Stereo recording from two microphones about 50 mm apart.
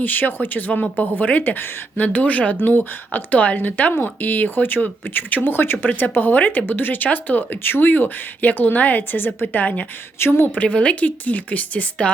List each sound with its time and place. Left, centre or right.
0.0 s speech: left
2.6 s speech: left
3.3 s speech: left
10.2 s speech: left
10.6 s speech: left